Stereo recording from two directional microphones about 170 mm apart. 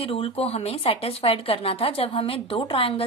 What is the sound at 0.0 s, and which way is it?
Speech, 35° left (ahead or behind).